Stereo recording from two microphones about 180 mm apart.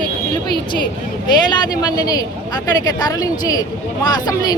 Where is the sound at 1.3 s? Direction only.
25° left (ahead or behind).